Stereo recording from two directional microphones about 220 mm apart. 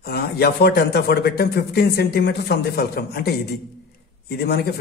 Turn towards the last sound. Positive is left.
turn(degrees=45)  # may be behind; listen again after turning